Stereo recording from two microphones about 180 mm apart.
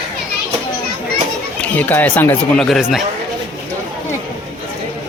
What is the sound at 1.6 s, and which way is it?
Speech, 10° left (ahead or behind).